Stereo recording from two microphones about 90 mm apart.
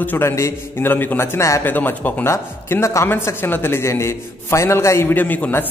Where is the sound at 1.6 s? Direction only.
20° left (ahead or behind).